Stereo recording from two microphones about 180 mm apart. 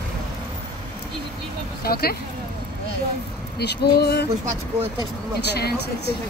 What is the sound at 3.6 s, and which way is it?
Speech, 65° left (ahead or behind).